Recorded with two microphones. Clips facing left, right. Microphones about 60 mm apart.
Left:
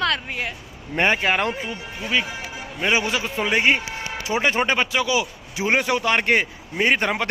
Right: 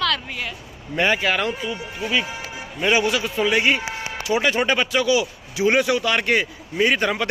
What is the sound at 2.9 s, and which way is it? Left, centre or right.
A woman's voice, left.